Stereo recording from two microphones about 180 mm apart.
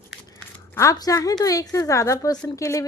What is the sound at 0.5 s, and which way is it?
A woman's voice, 15° left (ahead or behind).